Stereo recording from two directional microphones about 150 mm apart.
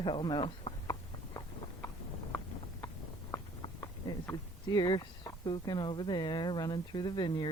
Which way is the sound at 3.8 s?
25° left (ahead or behind).